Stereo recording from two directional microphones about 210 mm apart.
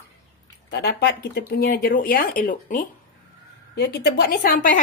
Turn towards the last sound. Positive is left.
turn(degrees=45)  # may be behind; listen again after turning